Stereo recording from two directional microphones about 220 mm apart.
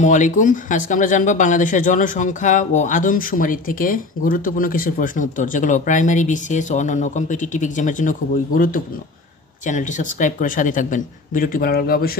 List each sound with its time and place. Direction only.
0.0 s speech: 35° left (ahead or behind)